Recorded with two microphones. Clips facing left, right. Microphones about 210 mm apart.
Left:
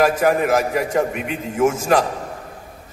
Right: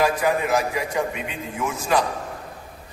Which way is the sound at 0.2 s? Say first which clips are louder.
Left 5 dB; 45° left (ahead or behind).